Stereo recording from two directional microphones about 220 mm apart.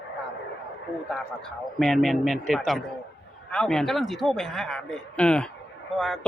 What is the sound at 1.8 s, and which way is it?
Speech, centre (ahead or behind).